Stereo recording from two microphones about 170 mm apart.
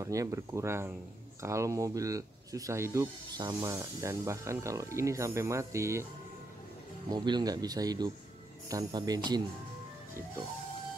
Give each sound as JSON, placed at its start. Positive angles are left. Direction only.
{"t": 0.0, "sound": "speech", "side_deg": -20}
{"t": 7.1, "sound": "speech", "side_deg": -25}